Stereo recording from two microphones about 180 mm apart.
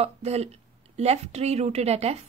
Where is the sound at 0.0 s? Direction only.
35° right (ahead or behind).